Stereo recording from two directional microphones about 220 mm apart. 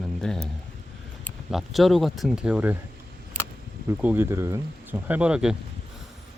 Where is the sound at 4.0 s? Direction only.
10° right (ahead or behind).